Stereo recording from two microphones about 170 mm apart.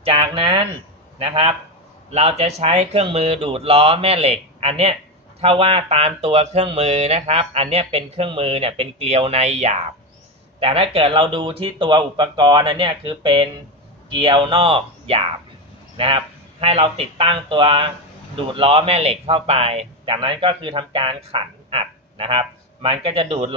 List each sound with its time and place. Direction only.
0.0 s a man's voice: 30° right (ahead or behind)